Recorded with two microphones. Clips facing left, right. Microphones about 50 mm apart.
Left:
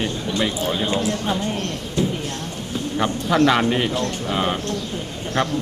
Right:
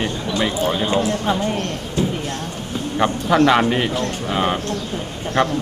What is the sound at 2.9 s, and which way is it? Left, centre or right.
Speech, centre.